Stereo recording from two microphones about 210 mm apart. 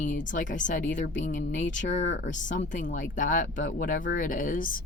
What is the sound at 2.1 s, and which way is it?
Speech, 60° left (ahead or behind).